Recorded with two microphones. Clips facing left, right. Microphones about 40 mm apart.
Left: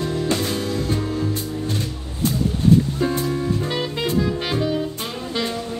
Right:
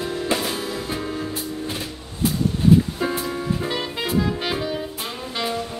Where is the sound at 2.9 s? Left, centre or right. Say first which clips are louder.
Left 3 dB; centre.